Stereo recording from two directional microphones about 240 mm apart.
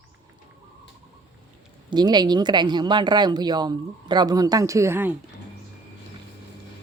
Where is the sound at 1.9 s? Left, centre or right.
Centre.